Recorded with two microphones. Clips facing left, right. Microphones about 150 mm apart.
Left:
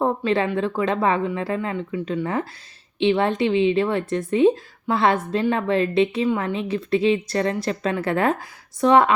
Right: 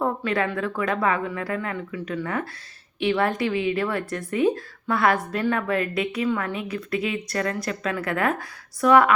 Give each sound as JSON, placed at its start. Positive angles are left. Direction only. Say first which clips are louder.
{"t": 0.0, "sound": "a woman's voice", "louder": "left 3 dB", "side_deg": 25}